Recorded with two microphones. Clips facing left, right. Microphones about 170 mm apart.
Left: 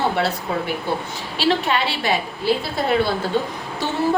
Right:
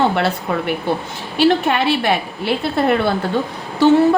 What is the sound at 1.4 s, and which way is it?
A woman's voice, 55° right (ahead or behind).